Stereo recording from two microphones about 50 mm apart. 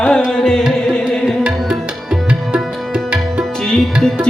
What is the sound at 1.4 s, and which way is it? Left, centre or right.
Tabla, centre.